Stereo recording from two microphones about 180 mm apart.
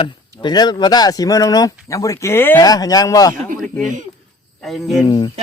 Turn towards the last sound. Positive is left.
turn(degrees=25)  # may be behind; listen again after turning